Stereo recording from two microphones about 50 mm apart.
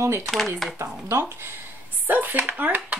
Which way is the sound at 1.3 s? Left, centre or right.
Right.